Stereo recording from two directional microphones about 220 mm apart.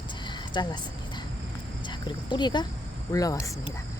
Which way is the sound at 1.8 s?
20° left (ahead or behind).